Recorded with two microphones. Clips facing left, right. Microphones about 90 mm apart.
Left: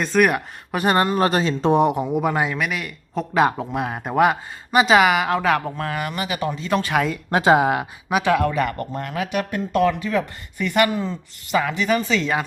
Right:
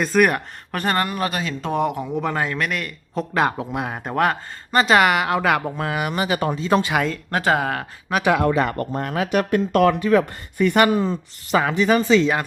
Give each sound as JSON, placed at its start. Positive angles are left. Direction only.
{"t": 0.0, "sound": "speech", "side_deg": 0}
{"t": 1.1, "sound": "speech", "side_deg": 30}
{"t": 6.1, "sound": "speech", "side_deg": -30}
{"t": 6.9, "sound": "speech", "side_deg": 0}
{"t": 7.3, "sound": "speech", "side_deg": 20}
{"t": 8.2, "sound": "speech", "side_deg": -20}
{"t": 9.4, "sound": "speech", "side_deg": -65}
{"t": 10.0, "sound": "speech", "side_deg": -45}
{"t": 11.4, "sound": "speech", "side_deg": -35}